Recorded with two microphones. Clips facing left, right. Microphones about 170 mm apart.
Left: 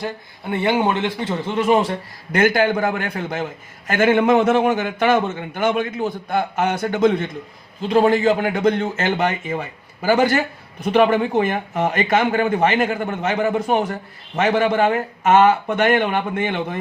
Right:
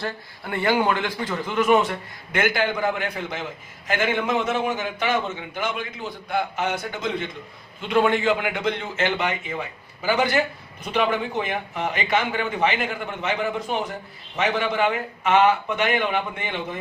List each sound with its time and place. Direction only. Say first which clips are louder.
0.0 s a man's voice: left 3 dB; 20° left (ahead or behind); by 7.3 s 50° left (ahead or behind)
7.8 s a man's voice: left 5 dB; 35° left (ahead or behind)